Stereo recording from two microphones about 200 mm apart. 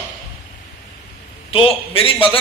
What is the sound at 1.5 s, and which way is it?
Speech, 25° left (ahead or behind).